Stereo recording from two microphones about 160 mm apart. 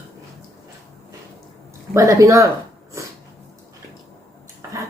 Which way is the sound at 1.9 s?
20° right (ahead or behind).